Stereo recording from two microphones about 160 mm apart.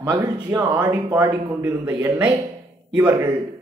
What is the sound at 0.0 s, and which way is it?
Speech, 25° right (ahead or behind).